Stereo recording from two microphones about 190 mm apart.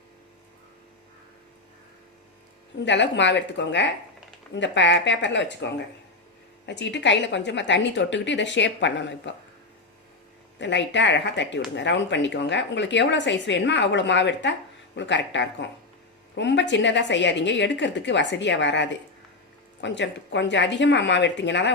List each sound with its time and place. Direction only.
2.8 s a woman's voice: 70° left (ahead or behind)
10.6 s a woman's voice: 70° left (ahead or behind)